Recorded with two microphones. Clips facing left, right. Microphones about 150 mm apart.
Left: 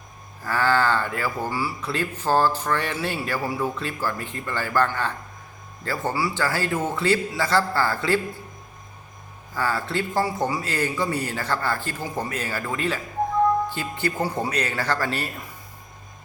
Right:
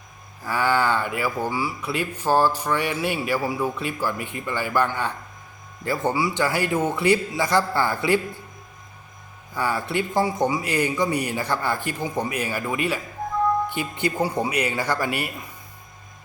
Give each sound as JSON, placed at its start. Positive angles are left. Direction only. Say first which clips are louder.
{"t": 0.4, "sound": "speech", "louder": "even", "side_deg": -15}
{"t": 9.6, "sound": "speech", "louder": "right 1 dB", "side_deg": -15}